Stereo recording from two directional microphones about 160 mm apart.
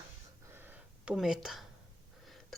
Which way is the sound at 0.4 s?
15° right (ahead or behind).